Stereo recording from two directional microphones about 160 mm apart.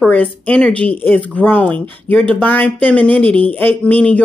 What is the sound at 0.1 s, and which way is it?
Speech, 10° left (ahead or behind).